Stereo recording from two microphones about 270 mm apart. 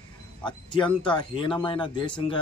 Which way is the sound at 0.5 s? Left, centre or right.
Centre.